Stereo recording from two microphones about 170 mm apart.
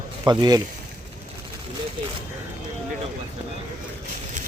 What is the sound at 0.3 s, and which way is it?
Speech, 25° right (ahead or behind).